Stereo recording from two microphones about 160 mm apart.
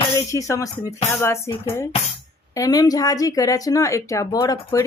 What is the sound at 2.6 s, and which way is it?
Speech, 25° left (ahead or behind).